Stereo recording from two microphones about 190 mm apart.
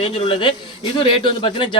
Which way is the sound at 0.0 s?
25° left (ahead or behind).